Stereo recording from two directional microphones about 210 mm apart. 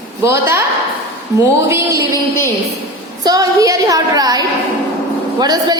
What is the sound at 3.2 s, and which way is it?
A woman's voice, 15° right (ahead or behind).